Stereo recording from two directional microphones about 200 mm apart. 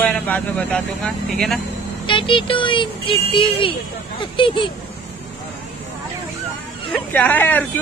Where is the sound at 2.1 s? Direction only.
25° left (ahead or behind).